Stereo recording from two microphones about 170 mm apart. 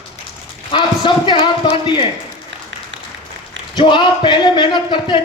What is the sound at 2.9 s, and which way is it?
Applause, 90° right.